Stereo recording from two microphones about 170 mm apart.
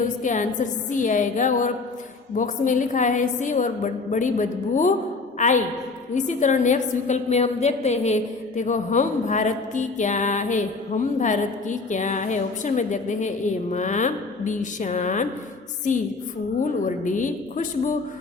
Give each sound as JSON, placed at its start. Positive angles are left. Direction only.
{"t": 0.2, "sound": "a woman's voice", "side_deg": 45}